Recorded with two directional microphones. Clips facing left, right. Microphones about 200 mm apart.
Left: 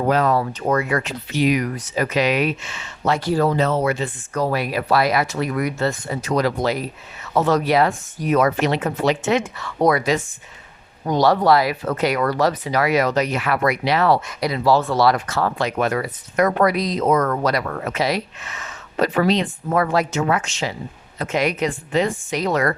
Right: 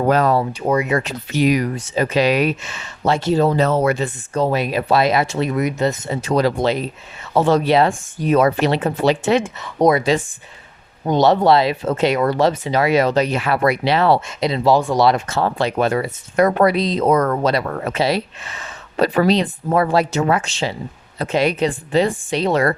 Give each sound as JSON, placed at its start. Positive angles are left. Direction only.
{"t": 0.0, "sound": "speech", "side_deg": -40}
{"t": 0.6, "sound": "speech", "side_deg": -10}
{"t": 1.0, "sound": "speech", "side_deg": -45}
{"t": 3.6, "sound": "speech", "side_deg": -45}
{"t": 4.4, "sound": "speech", "side_deg": -20}